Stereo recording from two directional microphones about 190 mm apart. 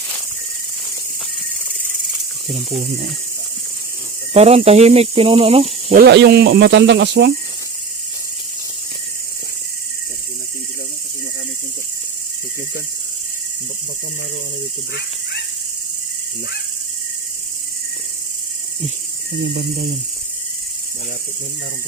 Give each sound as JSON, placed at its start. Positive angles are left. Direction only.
{"t": 4.4, "sound": "speech", "side_deg": -35}
{"t": 5.9, "sound": "cricket", "side_deg": -55}
{"t": 19.5, "sound": "speech", "side_deg": -55}